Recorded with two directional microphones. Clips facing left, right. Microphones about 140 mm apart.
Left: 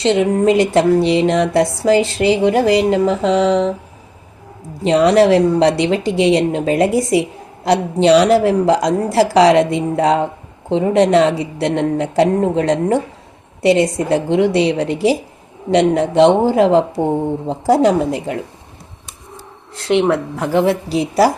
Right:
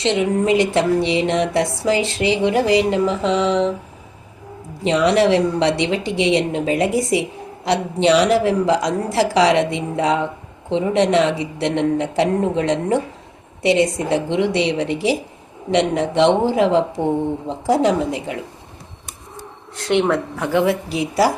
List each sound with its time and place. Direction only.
0.0 s speech: 40° left (ahead or behind)
4.8 s speech: 40° left (ahead or behind)
19.9 s speech: 25° left (ahead or behind)